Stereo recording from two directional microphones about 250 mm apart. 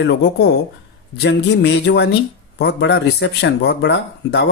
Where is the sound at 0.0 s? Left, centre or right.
Left.